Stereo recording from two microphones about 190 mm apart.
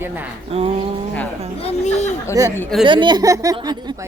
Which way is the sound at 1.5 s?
35° left (ahead or behind).